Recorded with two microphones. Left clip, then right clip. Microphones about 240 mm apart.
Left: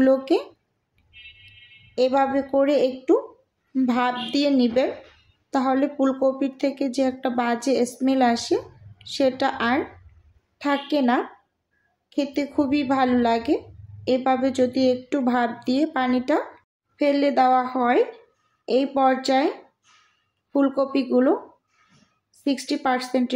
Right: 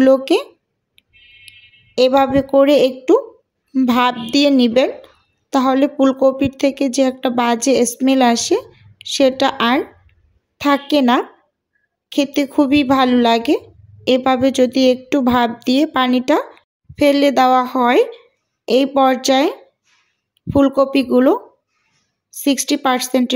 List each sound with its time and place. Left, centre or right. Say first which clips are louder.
0.0 s speech: right 7 dB; right
2.0 s speech: right 7 dB; right